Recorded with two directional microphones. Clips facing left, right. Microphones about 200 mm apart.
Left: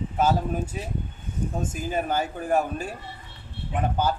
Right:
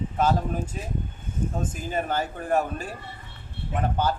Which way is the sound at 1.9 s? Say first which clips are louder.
Left 1 dB; 10° left (ahead or behind).